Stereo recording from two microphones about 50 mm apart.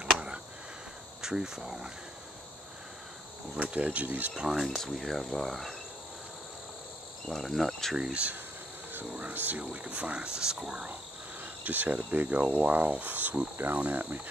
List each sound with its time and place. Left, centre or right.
1.2 s speech: centre
3.5 s speech: right
4.4 s speech: centre
4.6 s speech: centre
7.2 s speech: centre
8.0 s speech: right
9.3 s speech: right; by 10.9 s centre
11.4 s speech: right